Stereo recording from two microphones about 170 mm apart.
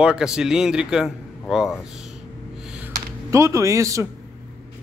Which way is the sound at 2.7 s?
15° right (ahead or behind).